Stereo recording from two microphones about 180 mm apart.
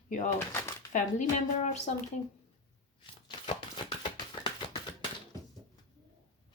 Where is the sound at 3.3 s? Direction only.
25° left (ahead or behind).